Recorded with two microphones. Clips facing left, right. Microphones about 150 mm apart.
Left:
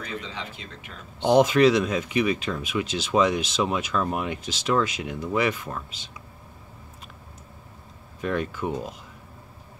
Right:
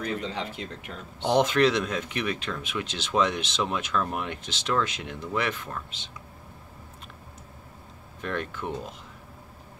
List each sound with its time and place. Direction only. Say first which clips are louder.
0.2 s speech: right 4 dB; 50° right (ahead or behind)
1.2 s speech: left 4 dB; 5° left (ahead or behind)
8.2 s speech: left 5 dB; 5° left (ahead or behind)